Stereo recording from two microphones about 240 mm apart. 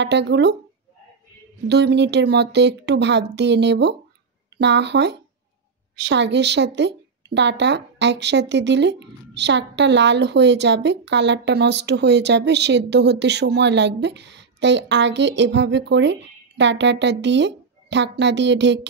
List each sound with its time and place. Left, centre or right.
0.0 s a woman's voice: right
1.7 s a woman's voice: right